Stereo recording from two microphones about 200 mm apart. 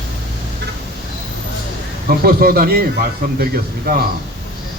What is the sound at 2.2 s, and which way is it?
A man's voice, 50° right (ahead or behind).